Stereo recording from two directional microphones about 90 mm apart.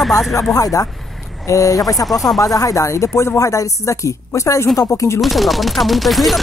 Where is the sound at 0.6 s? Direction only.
40° left (ahead or behind).